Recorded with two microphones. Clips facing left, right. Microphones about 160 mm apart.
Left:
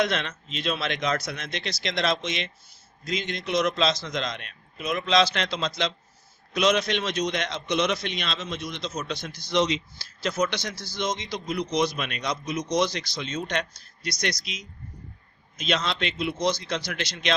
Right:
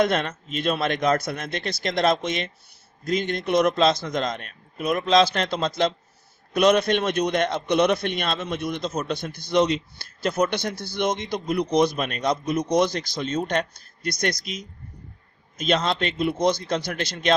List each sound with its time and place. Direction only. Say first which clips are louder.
0.0 s a man's voice: right 4 dB; 50° right (ahead or behind)